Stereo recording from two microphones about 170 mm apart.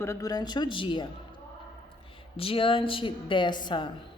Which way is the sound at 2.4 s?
30° left (ahead or behind).